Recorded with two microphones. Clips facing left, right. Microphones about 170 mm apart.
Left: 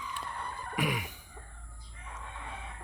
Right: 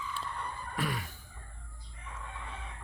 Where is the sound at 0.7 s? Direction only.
15° left (ahead or behind).